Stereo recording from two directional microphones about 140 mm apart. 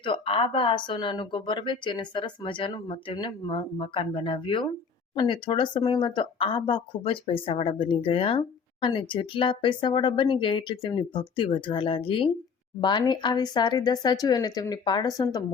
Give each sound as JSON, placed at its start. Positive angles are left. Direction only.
{"t": 0.0, "sound": "speech", "side_deg": 40}